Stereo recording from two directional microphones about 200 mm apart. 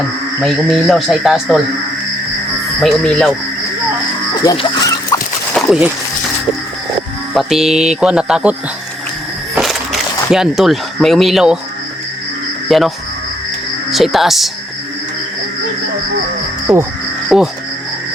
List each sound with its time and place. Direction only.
0.4 s speech: centre (ahead or behind)
2.8 s speech: 5° left (ahead or behind)
4.4 s dog: 20° left (ahead or behind)
5.5 s speech: 5° right (ahead or behind)
7.3 s speech: centre (ahead or behind)
10.3 s speech: centre (ahead or behind)
12.6 s speech: centre (ahead or behind)
13.9 s speech: centre (ahead or behind)
17.2 s speech: centre (ahead or behind)